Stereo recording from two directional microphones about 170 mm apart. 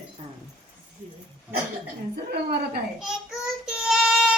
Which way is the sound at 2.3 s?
70° right (ahead or behind).